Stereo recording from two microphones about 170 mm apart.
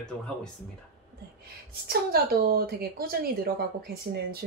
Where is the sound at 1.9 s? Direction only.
65° right (ahead or behind).